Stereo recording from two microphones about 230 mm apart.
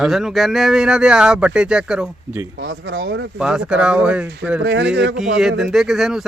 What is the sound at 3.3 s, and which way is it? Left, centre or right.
Speech, centre.